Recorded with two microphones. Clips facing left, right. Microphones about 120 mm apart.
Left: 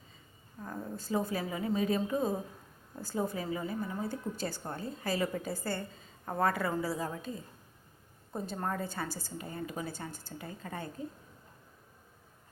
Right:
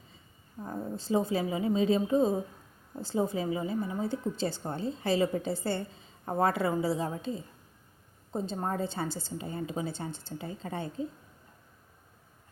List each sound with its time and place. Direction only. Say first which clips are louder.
0.6 s a woman's voice: right 4 dB; 25° right (ahead or behind)
8.3 s a woman's voice: right 3 dB; 20° right (ahead or behind)